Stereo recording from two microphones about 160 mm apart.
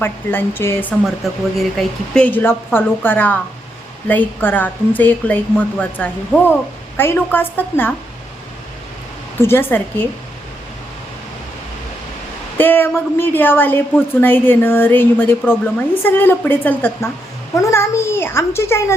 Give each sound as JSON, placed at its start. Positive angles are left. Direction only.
{"t": 0.0, "sound": "a woman's voice", "side_deg": 15}
{"t": 9.4, "sound": "a woman's voice", "side_deg": 15}
{"t": 12.5, "sound": "a woman's voice", "side_deg": 15}